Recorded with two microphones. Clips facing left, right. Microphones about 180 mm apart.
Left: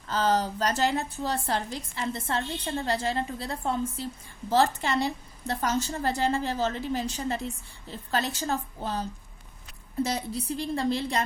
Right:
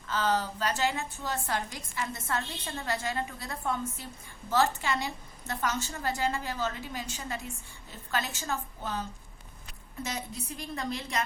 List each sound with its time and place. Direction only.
0.1 s a woman's voice: 40° left (ahead or behind)